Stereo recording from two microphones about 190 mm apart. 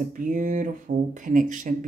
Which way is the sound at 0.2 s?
45° right (ahead or behind).